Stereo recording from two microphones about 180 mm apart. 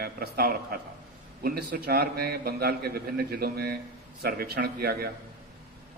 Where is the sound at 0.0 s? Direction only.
55° right (ahead or behind).